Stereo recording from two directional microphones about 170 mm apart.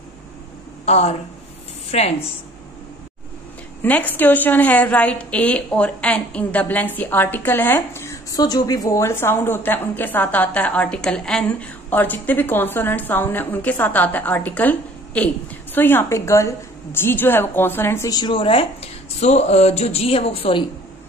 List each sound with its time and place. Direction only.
0.8 s a woman's voice: 40° left (ahead or behind)
3.8 s a woman's voice: 10° left (ahead or behind); by 20.6 s 35° left (ahead or behind)